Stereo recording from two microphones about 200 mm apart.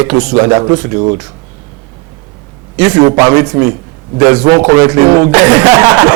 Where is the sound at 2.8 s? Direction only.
20° right (ahead or behind).